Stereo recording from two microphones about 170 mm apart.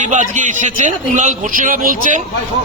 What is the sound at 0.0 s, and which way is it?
A man's voice, 45° right (ahead or behind).